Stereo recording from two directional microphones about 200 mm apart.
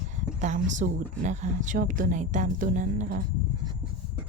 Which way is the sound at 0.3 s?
35° right (ahead or behind).